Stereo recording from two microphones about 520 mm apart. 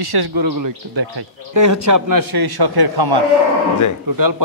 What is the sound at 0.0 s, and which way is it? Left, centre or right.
A man's voice, right.